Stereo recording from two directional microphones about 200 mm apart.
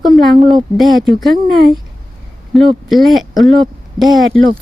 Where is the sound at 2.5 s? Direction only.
Centre (ahead or behind).